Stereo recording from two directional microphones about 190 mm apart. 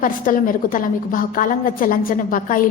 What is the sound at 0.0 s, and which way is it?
A woman's voice, 45° left (ahead or behind).